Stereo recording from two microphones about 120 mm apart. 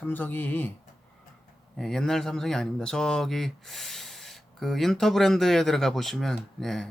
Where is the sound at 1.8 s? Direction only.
5° left (ahead or behind).